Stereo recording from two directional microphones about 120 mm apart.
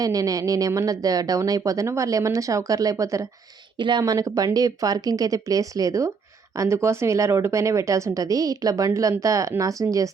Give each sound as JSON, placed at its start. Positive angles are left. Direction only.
{"t": 0.0, "sound": "speech", "side_deg": -30}
{"t": 3.8, "sound": "speech", "side_deg": -40}